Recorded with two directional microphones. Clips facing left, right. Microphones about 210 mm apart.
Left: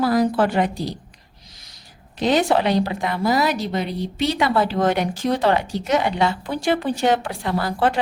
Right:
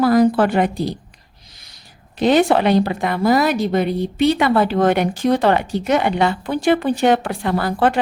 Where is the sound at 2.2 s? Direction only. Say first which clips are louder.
Right 4 dB; 55° right (ahead or behind).